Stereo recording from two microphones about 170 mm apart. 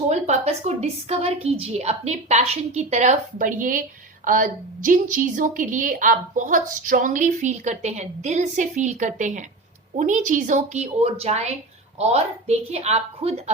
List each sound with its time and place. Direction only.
0.1 s a woman's voice: 40° right (ahead or behind)